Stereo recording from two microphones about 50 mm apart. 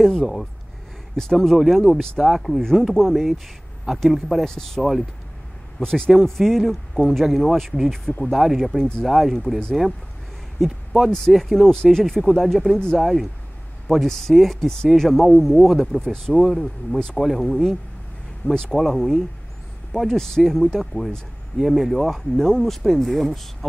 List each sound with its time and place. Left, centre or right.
0.0 s a man's voice: centre
2.1 s a man's voice: centre
10.6 s speech: centre
11.1 s a man's voice: centre
11.3 s speech: centre
12.7 s a man's voice: centre
13.0 s a man's voice: centre
16.0 s a man's voice: centre
16.3 s a man's voice: centre